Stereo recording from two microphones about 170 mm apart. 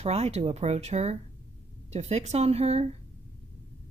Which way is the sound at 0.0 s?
40° right (ahead or behind).